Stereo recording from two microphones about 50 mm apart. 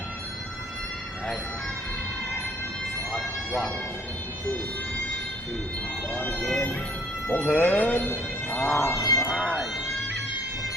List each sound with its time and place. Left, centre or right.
3.1 s a sound: centre
6.1 s speech: left
7.3 s speech: left
8.7 s cat: left